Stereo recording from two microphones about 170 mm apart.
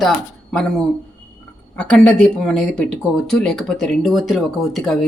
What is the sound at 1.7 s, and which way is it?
Speech, 5° left (ahead or behind).